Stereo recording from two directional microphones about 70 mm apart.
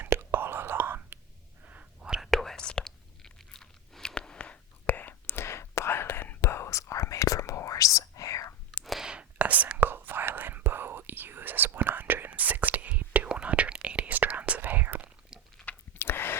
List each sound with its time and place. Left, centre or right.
0.0 s whispering: right
2.0 s whispering: centre
2.3 s chewing: centre; by 6.4 s left
6.4 s whispering: left
8.8 s clicking: centre
9.0 s whispering: centre
15.6 s a sound: left